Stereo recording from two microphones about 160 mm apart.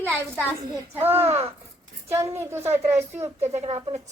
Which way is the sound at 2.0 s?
15° right (ahead or behind).